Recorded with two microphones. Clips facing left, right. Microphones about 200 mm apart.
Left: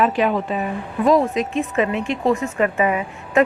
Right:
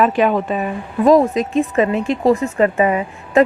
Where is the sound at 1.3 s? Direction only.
35° right (ahead or behind).